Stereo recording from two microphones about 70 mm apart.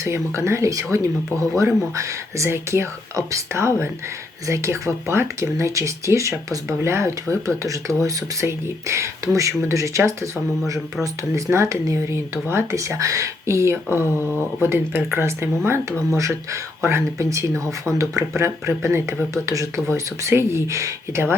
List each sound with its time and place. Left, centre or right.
0.0 s speech: right
2.5 s speech: right
14.6 s speech: right
16.8 s speech: right
17.2 s speech: right